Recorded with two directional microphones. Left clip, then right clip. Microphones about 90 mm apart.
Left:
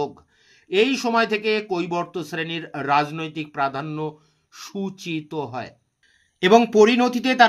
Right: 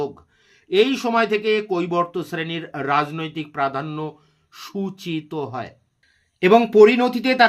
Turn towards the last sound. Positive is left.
turn(degrees=45)  # may be behind; listen again after turning